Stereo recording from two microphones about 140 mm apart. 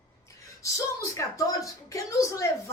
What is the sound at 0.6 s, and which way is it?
A woman's voice, 20° left (ahead or behind).